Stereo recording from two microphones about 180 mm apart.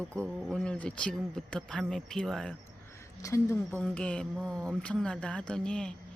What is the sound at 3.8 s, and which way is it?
Speech, 5° left (ahead or behind).